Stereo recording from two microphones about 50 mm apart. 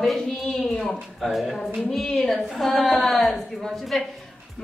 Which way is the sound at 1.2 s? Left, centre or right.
Centre.